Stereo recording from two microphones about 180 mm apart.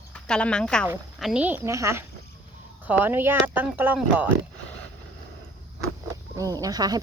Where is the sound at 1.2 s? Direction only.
5° right (ahead or behind).